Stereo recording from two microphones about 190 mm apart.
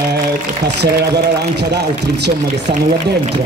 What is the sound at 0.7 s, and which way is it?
A man's voice, 60° right (ahead or behind).